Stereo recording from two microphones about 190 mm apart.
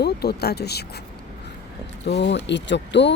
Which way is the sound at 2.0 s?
65° left (ahead or behind).